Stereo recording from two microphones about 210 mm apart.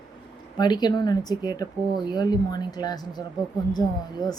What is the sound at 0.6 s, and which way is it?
Speech, 20° left (ahead or behind).